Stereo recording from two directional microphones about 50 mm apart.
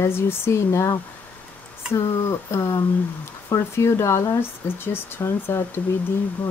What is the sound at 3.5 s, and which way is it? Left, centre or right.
Speech, left.